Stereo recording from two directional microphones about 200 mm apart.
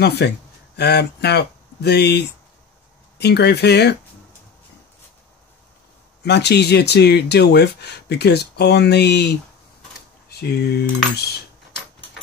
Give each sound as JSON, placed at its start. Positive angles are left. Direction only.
{"t": 0.0, "sound": "speech", "side_deg": 55}
{"t": 6.2, "sound": "speech", "side_deg": 55}
{"t": 10.4, "sound": "speech", "side_deg": 55}